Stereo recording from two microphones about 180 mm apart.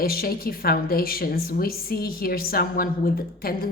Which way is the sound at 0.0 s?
55° left (ahead or behind).